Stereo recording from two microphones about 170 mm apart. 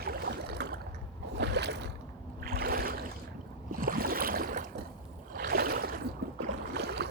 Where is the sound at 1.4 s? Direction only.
80° right.